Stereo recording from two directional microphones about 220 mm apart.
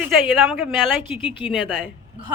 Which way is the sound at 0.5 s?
Centre (ahead or behind).